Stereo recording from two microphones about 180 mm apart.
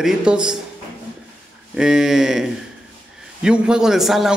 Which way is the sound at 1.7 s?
5° right (ahead or behind).